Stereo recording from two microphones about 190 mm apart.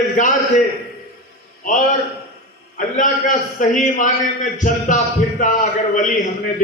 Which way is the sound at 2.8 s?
40° left (ahead or behind).